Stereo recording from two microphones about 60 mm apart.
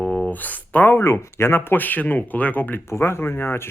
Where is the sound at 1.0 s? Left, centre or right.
Left.